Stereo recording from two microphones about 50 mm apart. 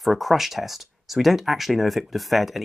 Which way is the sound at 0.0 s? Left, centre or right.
Centre.